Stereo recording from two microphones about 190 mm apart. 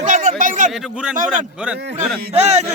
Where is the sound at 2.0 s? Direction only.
35° right (ahead or behind).